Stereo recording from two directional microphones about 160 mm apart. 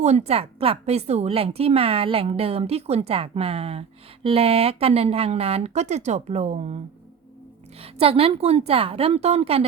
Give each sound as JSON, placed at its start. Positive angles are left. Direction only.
{"t": 0.0, "sound": "a woman's voice", "side_deg": -45}
{"t": 7.8, "sound": "a woman's voice", "side_deg": -35}